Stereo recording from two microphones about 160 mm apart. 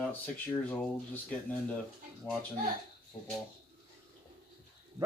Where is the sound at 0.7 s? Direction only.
10° left (ahead or behind).